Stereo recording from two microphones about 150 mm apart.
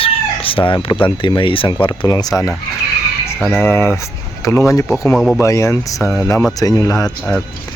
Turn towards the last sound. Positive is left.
turn(degrees=5)  # may be behind; listen again after turning